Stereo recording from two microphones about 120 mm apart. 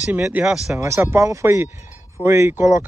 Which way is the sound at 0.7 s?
25° right (ahead or behind).